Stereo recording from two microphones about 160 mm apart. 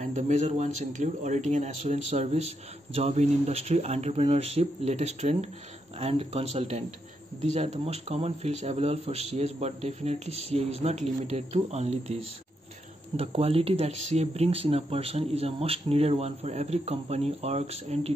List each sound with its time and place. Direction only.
0.0 s speech: 50° right (ahead or behind)